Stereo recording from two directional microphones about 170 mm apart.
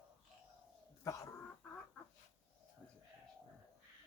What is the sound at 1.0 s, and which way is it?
Chicken, 20° left (ahead or behind).